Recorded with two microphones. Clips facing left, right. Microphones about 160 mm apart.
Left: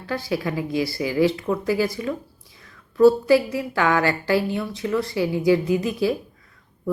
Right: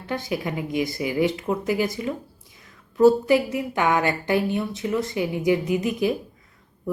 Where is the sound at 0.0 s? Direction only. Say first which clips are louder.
Left 2 dB; 20° right (ahead or behind).